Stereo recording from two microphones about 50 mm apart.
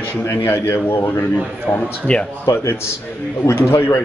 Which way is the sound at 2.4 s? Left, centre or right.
Left.